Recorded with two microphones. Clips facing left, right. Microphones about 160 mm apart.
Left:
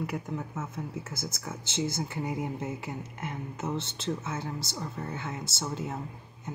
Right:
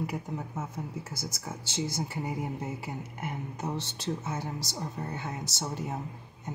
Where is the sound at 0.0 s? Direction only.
15° right (ahead or behind).